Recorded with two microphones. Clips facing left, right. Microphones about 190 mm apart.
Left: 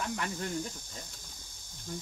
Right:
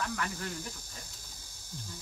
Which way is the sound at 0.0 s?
20° left (ahead or behind).